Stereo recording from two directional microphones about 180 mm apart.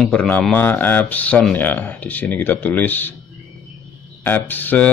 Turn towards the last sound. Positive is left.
turn(degrees=10)  # may be behind; listen again after turning